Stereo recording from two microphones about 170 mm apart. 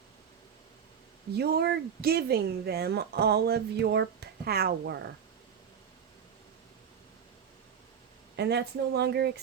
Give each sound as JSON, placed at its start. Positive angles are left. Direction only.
{"t": 1.3, "sound": "speech", "side_deg": -65}
{"t": 8.4, "sound": "speech", "side_deg": -80}